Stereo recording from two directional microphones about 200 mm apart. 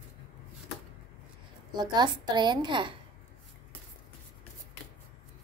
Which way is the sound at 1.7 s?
20° right (ahead or behind).